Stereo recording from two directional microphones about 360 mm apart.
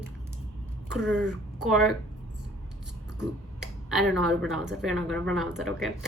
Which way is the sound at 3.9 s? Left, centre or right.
Centre.